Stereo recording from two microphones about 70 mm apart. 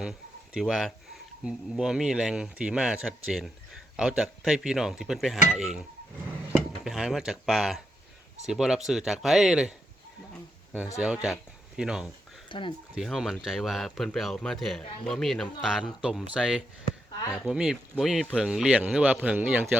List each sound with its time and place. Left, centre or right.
0.0 s a sound: centre
0.6 s speech: centre
6.8 s speech: centre
10.9 s speech: centre
15.6 s speech: centre; by 19.6 s right